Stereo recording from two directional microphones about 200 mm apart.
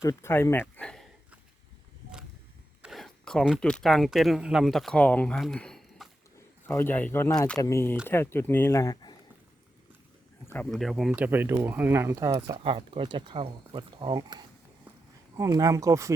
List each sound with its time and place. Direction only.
0.0 s speech: 15° left (ahead or behind)
2.8 s speech: centre (ahead or behind); by 9.1 s 20° left (ahead or behind)
10.4 s speech: 10° left (ahead or behind); by 16.1 s 15° right (ahead or behind)